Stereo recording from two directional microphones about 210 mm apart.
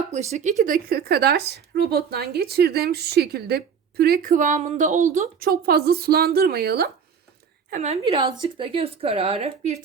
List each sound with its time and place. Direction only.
0.1 s speech: 35° right (ahead or behind)
5.5 s speech: 45° right (ahead or behind)
7.7 s speech: 30° right (ahead or behind)